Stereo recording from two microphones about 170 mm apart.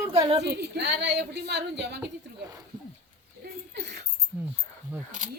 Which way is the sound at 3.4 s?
75° right (ahead or behind).